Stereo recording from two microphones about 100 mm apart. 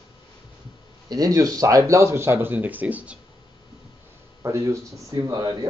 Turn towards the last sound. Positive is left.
turn(degrees=-40)  # may be behind; listen again after turning